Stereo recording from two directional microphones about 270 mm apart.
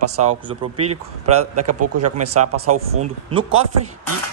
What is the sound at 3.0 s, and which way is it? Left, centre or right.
Speech, centre.